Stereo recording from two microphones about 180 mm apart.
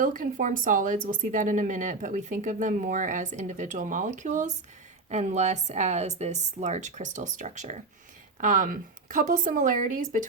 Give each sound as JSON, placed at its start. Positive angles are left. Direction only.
{"t": 0.0, "sound": "a woman's voice", "side_deg": -50}